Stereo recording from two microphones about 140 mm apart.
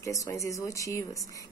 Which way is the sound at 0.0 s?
20° left (ahead or behind).